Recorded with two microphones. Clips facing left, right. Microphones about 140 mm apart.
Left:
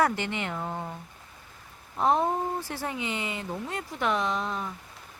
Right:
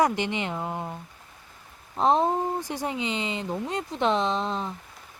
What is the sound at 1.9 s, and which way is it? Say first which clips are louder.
Speech: right 3 dB; 20° right (ahead or behind).